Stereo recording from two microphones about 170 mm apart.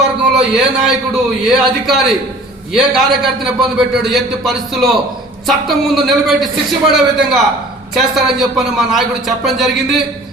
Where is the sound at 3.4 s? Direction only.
Centre (ahead or behind).